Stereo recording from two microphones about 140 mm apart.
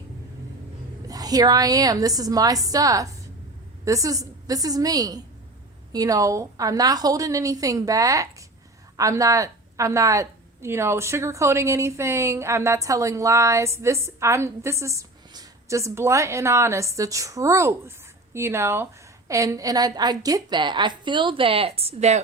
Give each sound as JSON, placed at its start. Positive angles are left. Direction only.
{"t": 1.0, "sound": "a woman's voice", "side_deg": -25}